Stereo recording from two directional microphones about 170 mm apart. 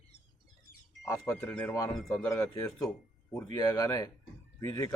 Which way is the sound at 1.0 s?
15° left (ahead or behind).